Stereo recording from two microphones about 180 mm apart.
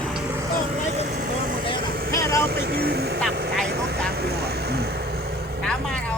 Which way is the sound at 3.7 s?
60° right (ahead or behind).